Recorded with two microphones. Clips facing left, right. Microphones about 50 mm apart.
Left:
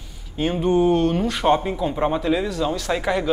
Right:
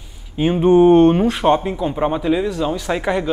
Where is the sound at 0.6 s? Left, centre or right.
Right.